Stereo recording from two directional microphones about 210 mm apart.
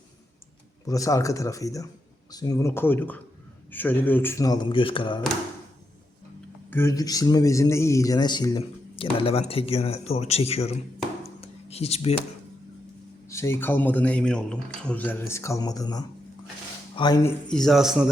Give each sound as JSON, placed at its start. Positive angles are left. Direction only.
{"t": 0.9, "sound": "a man's voice", "side_deg": 15}
{"t": 6.7, "sound": "speech", "side_deg": 10}
{"t": 11.2, "sound": "a sound", "side_deg": 30}
{"t": 13.2, "sound": "a man's voice", "side_deg": 15}
{"t": 17.5, "sound": "a man's voice", "side_deg": 0}